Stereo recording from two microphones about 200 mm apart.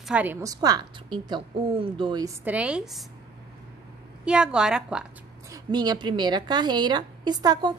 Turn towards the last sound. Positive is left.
turn(degrees=-20)  # may be behind; listen again after turning